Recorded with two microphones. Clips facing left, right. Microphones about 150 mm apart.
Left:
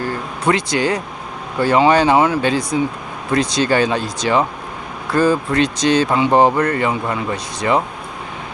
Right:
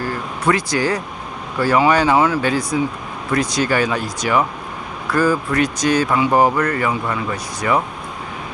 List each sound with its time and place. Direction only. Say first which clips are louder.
0.0 s speech: left 1 dB; 25° left (ahead or behind)